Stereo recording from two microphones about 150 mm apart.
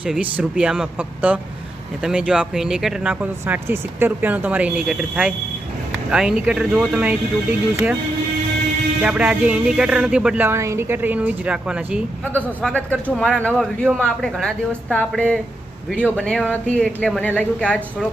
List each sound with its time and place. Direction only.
0.0 s a man's voice: 10° right (ahead or behind)
9.0 s a man's voice: 10° right (ahead or behind)
12.6 s speech: 10° left (ahead or behind)